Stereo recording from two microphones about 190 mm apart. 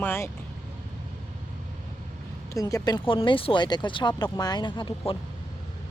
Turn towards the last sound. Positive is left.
turn(degrees=25)  # may be behind; listen again after turning